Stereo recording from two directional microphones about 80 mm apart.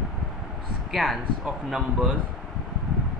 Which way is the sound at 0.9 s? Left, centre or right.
Centre.